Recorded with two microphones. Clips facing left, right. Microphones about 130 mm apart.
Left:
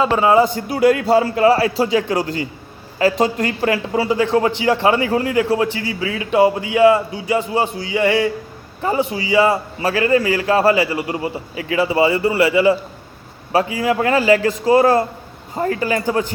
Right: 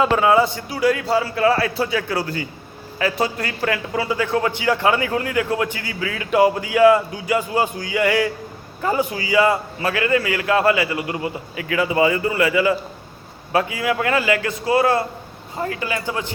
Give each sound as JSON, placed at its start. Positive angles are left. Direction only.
{"t": 0.3, "sound": "a man's voice", "side_deg": 45}
{"t": 1.9, "sound": "a man's voice", "side_deg": 20}